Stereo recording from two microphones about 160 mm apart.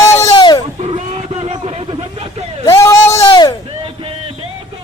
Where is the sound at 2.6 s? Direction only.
20° left (ahead or behind).